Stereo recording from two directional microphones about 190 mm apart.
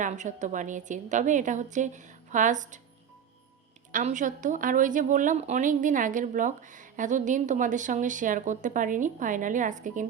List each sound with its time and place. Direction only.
0.0 s a woman's voice: 40° right (ahead or behind)
3.9 s a woman's voice: 40° right (ahead or behind)